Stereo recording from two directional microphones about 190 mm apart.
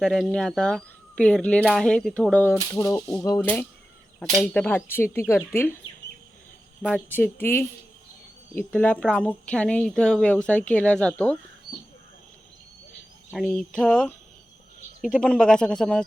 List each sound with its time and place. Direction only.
0.0 s speech: 5° left (ahead or behind)
7.1 s speech: 10° left (ahead or behind)
13.3 s speech: 5° left (ahead or behind)